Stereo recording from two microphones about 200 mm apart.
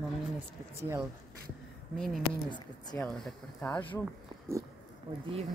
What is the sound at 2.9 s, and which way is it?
Speech, centre (ahead or behind).